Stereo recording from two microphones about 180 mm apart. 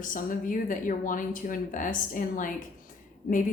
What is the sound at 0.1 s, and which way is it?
A woman's voice, 50° left (ahead or behind).